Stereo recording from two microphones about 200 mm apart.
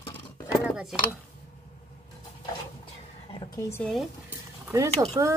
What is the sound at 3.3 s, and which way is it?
Speech, 15° left (ahead or behind).